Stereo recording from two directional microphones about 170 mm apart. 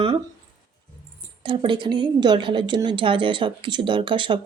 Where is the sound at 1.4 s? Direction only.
30° right (ahead or behind).